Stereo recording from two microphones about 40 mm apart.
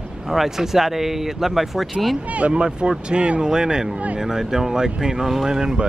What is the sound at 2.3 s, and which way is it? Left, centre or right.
Speech, right.